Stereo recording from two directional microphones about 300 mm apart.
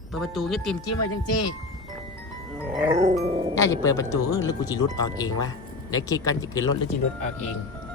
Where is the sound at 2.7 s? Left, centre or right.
Centre.